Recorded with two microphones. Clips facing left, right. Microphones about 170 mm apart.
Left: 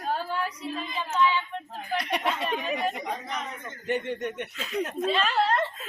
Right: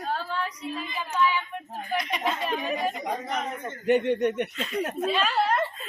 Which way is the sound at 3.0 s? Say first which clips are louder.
Right 4 dB; 55° right (ahead or behind).